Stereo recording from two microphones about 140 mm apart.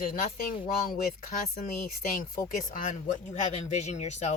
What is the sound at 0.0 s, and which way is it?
Speech, 90° left.